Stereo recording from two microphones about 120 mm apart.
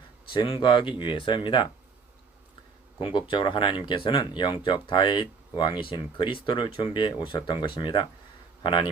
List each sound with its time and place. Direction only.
0.3 s speech: 45° left (ahead or behind)
3.0 s speech: 45° left (ahead or behind)